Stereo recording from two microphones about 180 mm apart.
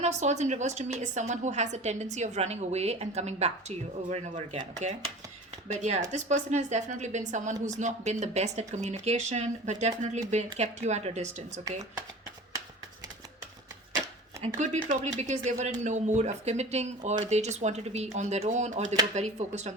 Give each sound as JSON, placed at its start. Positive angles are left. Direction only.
{"t": 0.0, "sound": "a woman's voice", "side_deg": -40}
{"t": 14.4, "sound": "a woman's voice", "side_deg": -40}